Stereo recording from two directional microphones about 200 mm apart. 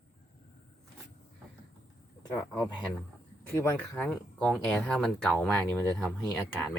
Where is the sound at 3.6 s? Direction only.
10° left (ahead or behind).